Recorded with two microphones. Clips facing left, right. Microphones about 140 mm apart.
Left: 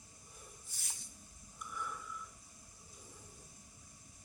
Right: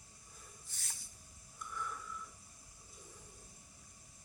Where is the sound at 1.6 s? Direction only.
5° left (ahead or behind).